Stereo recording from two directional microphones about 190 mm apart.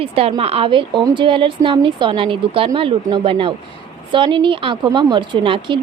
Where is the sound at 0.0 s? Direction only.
30° right (ahead or behind).